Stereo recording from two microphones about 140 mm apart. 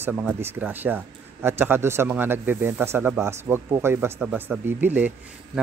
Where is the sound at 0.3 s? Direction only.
15° right (ahead or behind).